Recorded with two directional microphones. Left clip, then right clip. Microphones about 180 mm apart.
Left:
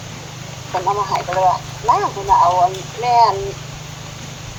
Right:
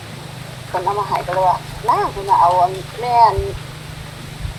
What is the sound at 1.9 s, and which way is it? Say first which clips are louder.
Speech: left 1 dB; 25° right (ahead or behind).